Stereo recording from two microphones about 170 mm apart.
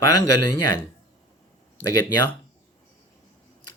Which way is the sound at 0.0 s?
20° left (ahead or behind).